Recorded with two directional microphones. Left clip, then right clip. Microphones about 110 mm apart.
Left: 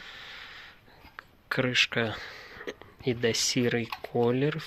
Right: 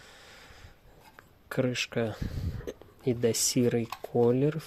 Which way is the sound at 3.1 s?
30° right (ahead or behind).